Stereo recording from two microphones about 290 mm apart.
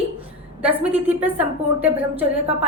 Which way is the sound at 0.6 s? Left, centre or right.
Centre.